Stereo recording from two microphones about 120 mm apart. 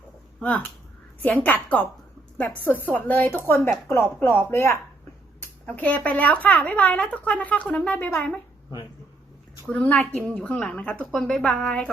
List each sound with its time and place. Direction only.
0.3 s speech: 10° left (ahead or behind)
9.6 s speech: 10° left (ahead or behind)